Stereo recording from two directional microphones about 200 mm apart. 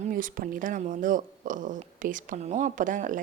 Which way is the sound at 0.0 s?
45° right (ahead or behind).